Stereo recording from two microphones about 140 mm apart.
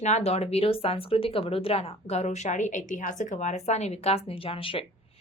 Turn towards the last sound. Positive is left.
turn(degrees=40)  # may be behind; listen again after turning